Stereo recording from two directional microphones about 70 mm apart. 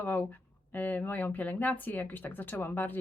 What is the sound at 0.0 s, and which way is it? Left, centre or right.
Speech, left.